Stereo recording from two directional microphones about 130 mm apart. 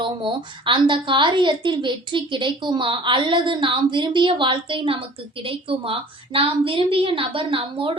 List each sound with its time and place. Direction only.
0.0 s a woman's voice: 40° right (ahead or behind)